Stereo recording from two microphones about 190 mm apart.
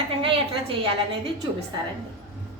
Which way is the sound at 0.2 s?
30° right (ahead or behind).